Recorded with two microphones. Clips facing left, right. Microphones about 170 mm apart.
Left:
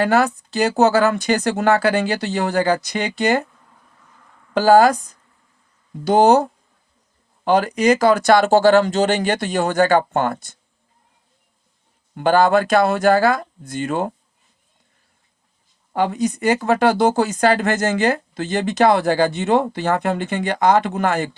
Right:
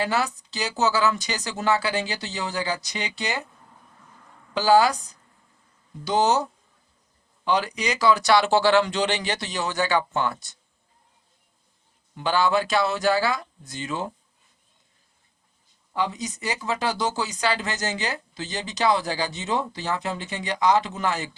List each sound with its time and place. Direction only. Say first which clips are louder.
0.0 s speech: left 8 dB; 50° left (ahead or behind)
4.5 s speech: left 6 dB; 50° left (ahead or behind)
12.1 s speech: left 7 dB; 50° left (ahead or behind)
15.9 s speech: left 8 dB; 55° left (ahead or behind)